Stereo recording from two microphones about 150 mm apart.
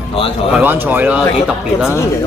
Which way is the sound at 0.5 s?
15° right (ahead or behind).